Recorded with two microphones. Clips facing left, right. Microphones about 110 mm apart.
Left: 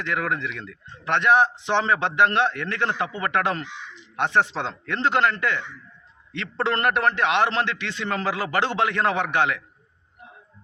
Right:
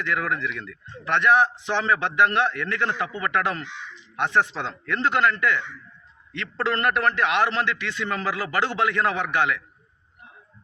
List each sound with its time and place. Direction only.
0.0 s a man's voice: 25° left (ahead or behind)